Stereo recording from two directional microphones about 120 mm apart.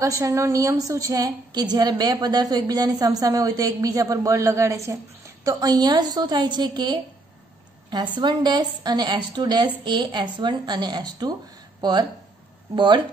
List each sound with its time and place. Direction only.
0.0 s a woman's voice: 25° right (ahead or behind)